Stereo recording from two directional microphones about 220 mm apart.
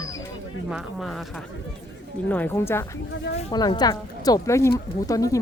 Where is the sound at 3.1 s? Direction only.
50° left (ahead or behind).